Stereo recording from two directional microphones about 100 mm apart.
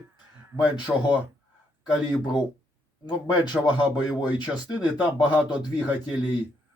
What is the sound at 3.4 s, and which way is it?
Speech, 45° left (ahead or behind).